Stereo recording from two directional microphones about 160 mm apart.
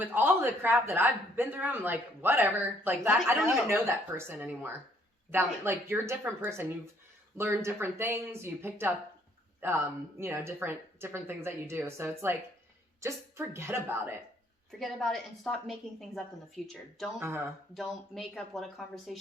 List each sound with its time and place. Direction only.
0.0 s a man's voice: 15° right (ahead or behind)
14.7 s a woman's voice: centre (ahead or behind)
17.2 s a man's voice: 15° right (ahead or behind)
17.7 s a woman's voice: centre (ahead or behind)